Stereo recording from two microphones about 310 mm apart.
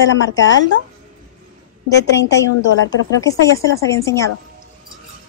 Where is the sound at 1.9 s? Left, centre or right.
Left.